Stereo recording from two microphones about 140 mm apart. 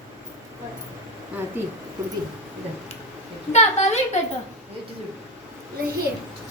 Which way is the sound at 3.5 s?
55° left (ahead or behind).